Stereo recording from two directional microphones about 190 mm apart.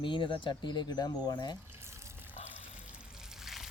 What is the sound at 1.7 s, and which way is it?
Water, 15° right (ahead or behind).